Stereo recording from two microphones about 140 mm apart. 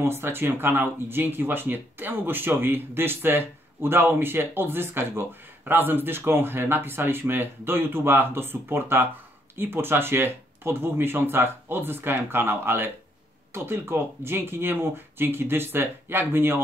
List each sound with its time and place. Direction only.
0.0 s speech: 15° right (ahead or behind)